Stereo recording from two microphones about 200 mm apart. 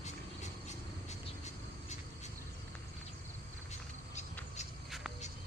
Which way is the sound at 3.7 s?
35° left (ahead or behind).